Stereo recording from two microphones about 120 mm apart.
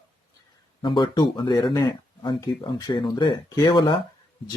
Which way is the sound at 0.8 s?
40° left (ahead or behind).